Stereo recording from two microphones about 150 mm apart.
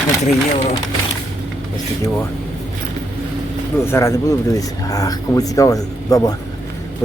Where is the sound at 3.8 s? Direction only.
20° left (ahead or behind).